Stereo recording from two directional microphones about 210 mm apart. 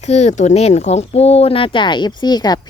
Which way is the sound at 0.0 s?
30° left (ahead or behind).